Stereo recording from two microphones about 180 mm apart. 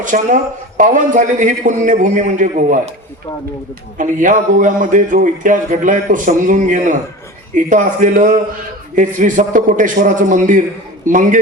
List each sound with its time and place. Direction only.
0.0 s speech: 45° right (ahead or behind)
3.9 s speech: 45° right (ahead or behind)